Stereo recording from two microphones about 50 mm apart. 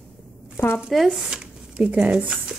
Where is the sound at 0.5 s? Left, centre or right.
Left.